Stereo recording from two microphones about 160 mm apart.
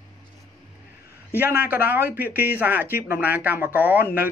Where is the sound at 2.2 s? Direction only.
70° left (ahead or behind).